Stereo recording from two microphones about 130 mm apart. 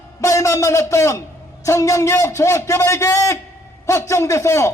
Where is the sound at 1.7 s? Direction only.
25° left (ahead or behind).